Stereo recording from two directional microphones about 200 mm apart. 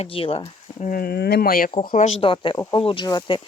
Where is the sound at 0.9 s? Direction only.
50° left (ahead or behind).